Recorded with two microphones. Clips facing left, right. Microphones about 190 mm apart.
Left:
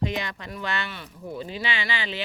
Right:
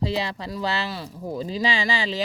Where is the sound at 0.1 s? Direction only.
30° right (ahead or behind).